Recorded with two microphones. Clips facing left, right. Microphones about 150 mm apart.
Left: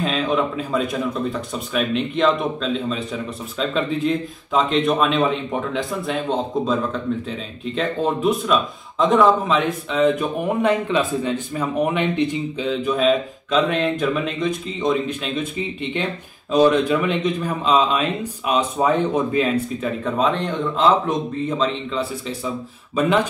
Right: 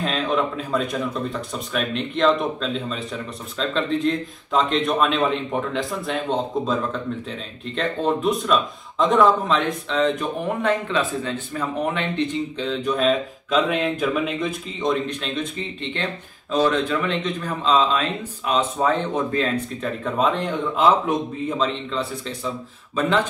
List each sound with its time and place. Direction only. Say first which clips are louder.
0.0 s a man's voice: left 2 dB; centre (ahead or behind)
20.1 s a man's voice: even; centre (ahead or behind)